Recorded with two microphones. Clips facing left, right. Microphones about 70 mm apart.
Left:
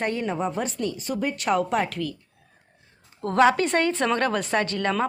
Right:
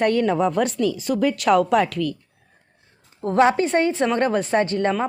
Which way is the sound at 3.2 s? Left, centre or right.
Right.